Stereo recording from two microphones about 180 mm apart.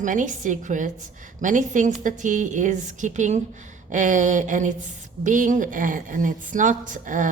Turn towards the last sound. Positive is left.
turn(degrees=-45)  # may be behind; listen again after turning